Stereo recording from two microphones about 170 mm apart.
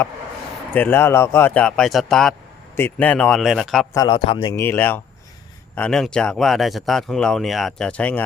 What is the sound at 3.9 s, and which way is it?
Speech, 25° left (ahead or behind).